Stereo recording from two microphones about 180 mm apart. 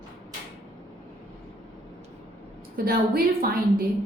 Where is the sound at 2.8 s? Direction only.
55° right (ahead or behind).